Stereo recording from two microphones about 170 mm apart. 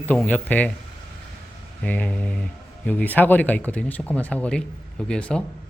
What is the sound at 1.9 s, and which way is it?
Speech, 10° left (ahead or behind).